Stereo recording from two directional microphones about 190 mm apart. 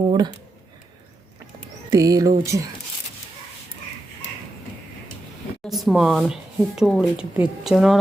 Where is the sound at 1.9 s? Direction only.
20° right (ahead or behind).